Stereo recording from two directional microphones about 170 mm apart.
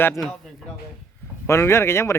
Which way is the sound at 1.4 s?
15° left (ahead or behind).